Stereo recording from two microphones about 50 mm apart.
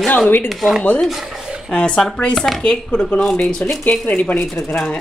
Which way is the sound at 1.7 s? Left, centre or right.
Left.